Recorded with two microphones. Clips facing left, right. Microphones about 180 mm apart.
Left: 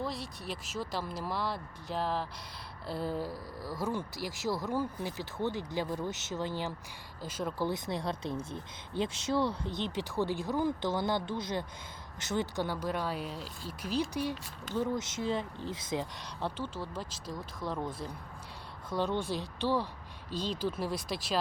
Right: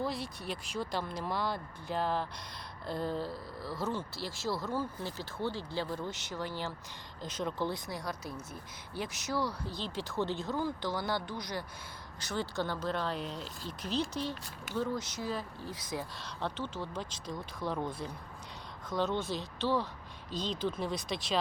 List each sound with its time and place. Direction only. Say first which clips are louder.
0.0 s speech: right 1 dB; centre (ahead or behind)
7.7 s speech: left 4 dB; 25° left (ahead or behind)
14.8 s speech: left 2 dB; 25° left (ahead or behind)
16.2 s speech: left 1 dB; 10° left (ahead or behind)
18.9 s speech: left 1 dB; 10° left (ahead or behind)